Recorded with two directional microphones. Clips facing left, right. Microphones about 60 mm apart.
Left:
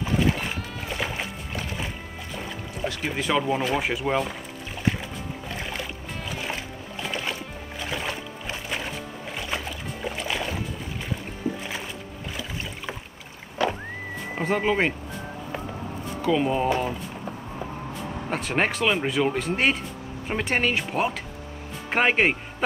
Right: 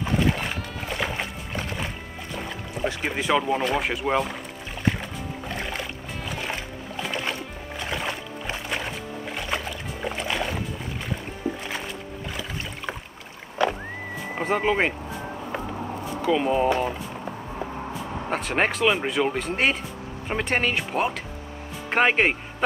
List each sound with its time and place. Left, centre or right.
0.0 s music: centre
2.8 s speech: centre
3.2 s speech: centre
5.5 s music: centre
11.4 s music: right
14.4 s speech: centre
16.2 s speech: centre
18.3 s speech: centre